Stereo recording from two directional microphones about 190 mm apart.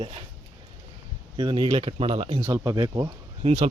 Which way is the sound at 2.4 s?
15° right (ahead or behind).